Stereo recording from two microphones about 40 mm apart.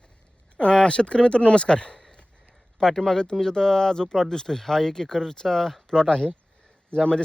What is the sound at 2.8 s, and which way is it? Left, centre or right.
Speech, centre.